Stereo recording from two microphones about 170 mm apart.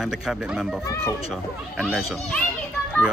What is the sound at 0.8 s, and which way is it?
Speech, 15° left (ahead or behind).